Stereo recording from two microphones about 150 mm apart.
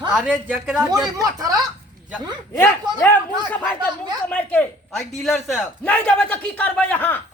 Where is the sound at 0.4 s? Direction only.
10° right (ahead or behind).